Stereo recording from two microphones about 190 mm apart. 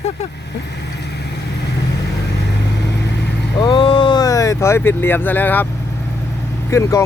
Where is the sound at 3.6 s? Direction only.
25° left (ahead or behind).